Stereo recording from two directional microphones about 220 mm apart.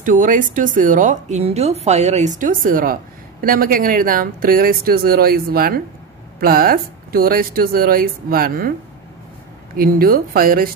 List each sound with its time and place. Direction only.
0.0 s a woman's voice: 35° right (ahead or behind)
9.8 s a woman's voice: 40° right (ahead or behind)